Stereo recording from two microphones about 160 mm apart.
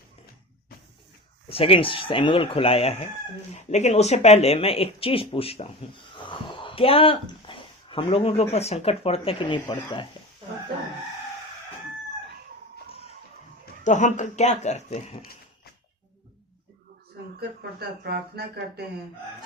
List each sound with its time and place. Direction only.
1.5 s speech: 35° left (ahead or behind)
6.2 s a sound: 30° left (ahead or behind)
8.5 s speech: 40° left (ahead or behind)
13.8 s speech: 50° left (ahead or behind)
17.6 s speech: 85° right